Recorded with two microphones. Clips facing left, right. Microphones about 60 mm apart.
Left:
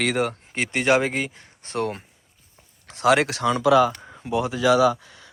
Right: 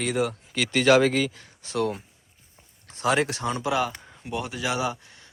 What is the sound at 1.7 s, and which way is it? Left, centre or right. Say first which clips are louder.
Speech: even; left.